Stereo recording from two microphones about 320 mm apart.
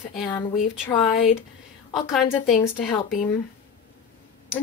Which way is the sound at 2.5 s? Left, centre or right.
Centre.